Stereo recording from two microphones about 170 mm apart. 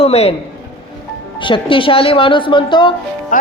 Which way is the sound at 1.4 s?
30° left (ahead or behind).